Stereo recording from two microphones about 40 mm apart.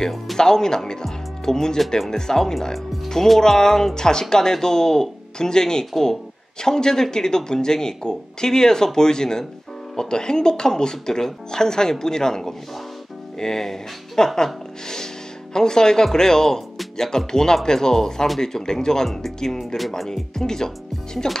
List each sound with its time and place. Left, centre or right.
0.4 s speech: centre